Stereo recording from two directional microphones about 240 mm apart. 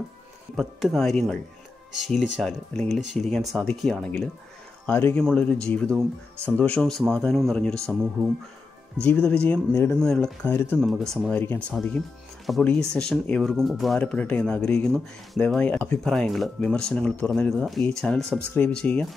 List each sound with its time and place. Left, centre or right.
0.6 s speech: centre
9.0 s speech: centre